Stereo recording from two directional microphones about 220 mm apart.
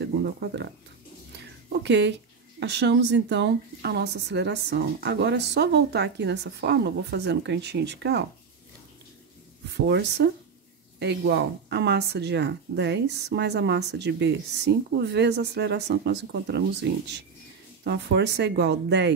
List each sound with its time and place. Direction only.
0.0 s speech: 50° right (ahead or behind)
1.3 s a sound: 50° right (ahead or behind)
2.6 s speech: 50° right (ahead or behind)
9.8 s speech: 50° right (ahead or behind)